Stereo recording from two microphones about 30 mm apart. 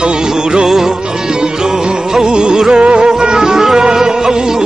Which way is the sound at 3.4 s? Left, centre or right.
Centre.